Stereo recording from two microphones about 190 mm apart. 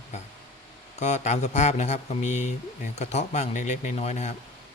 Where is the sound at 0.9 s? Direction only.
35° left (ahead or behind).